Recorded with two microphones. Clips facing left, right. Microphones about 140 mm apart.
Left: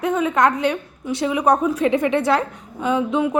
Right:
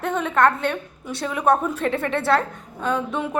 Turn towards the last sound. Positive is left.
turn(degrees=15)  # may be behind; listen again after turning